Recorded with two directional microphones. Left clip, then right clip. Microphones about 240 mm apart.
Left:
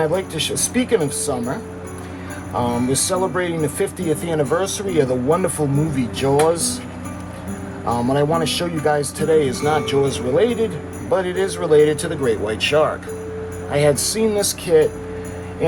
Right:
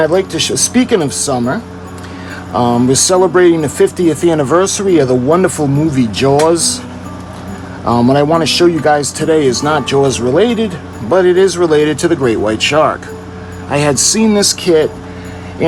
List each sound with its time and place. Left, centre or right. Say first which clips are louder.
0.0 s speech: right 8 dB; right
2.9 s speech: right 10 dB; right
7.9 s speech: right 8 dB; right